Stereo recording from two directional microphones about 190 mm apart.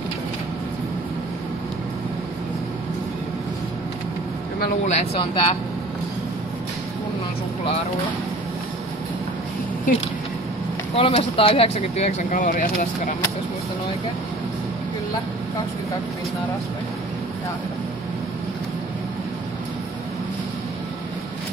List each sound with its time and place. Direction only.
4.6 s speech: 40° left (ahead or behind)
5.2 s speech: 25° left (ahead or behind)
11.0 s speech: 30° left (ahead or behind)